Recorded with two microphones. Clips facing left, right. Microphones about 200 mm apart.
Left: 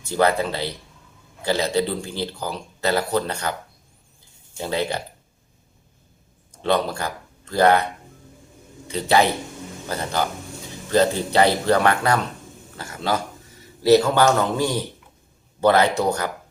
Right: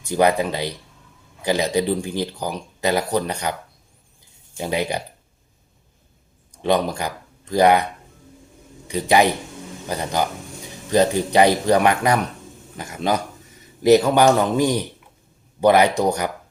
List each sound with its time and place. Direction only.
0.0 s speech: 15° right (ahead or behind)
4.5 s speech: 15° right (ahead or behind)
6.6 s speech: 15° right (ahead or behind)
8.9 s speech: 15° right (ahead or behind)